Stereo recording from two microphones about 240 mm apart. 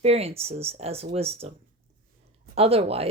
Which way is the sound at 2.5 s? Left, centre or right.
Right.